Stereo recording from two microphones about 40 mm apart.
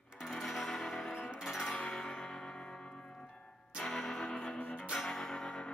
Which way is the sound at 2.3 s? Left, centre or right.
Centre.